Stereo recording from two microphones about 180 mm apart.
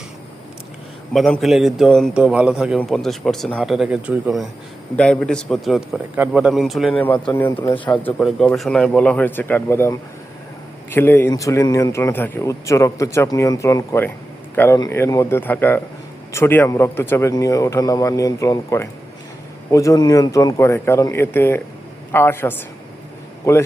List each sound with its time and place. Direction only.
1.1 s a man's voice: centre (ahead or behind)
7.3 s a man's voice: 15° left (ahead or behind)